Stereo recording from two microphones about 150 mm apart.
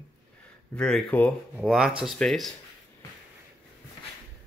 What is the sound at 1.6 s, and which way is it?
Speech, 5° right (ahead or behind).